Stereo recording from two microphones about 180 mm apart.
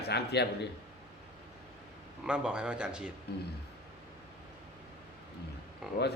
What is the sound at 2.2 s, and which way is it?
Speech, 5° right (ahead or behind).